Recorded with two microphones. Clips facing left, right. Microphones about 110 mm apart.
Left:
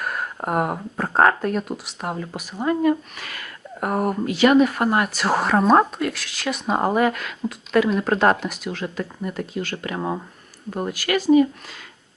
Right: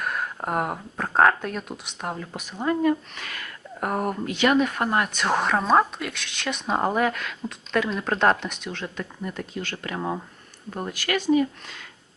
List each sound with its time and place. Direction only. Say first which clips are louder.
0.0 s speech: left 1 dB; centre (ahead or behind)